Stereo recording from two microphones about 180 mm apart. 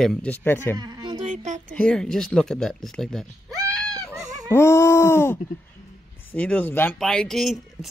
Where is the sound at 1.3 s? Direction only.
40° right (ahead or behind).